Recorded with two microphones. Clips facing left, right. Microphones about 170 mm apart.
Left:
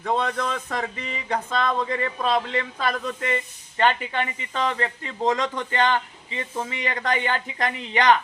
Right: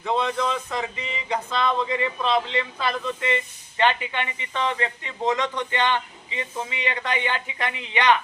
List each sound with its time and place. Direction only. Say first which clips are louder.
0.0 s speech: right 1 dB; 45° left (ahead or behind)